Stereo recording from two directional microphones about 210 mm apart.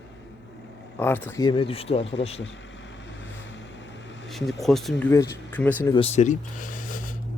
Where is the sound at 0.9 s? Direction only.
10° left (ahead or behind).